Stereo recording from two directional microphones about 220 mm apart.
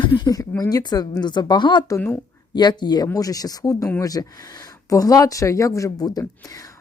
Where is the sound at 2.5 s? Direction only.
20° left (ahead or behind).